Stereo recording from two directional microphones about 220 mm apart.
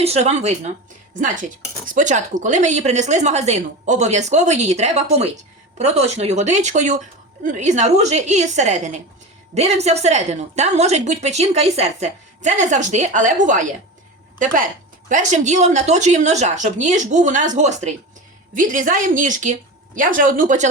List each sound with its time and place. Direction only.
0.0 s speech: 30° right (ahead or behind)
15.1 s speech: 35° right (ahead or behind)